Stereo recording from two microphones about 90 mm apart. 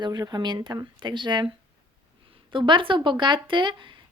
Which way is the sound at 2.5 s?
65° right (ahead or behind).